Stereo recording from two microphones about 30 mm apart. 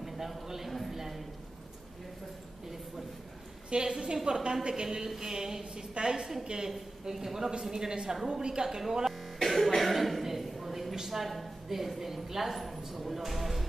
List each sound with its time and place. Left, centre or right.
0.0 s a sound: centre
0.7 s a sound: centre
3.7 s a woman's voice: right
5.1 s a woman's voice: centre
6.7 s a woman's voice: centre; by 8.6 s right
8.6 s a woman's voice: centre
9.4 s cough: centre
9.8 s speech: centre
10.2 s a sound: centre
11.2 s a woman's voice: centre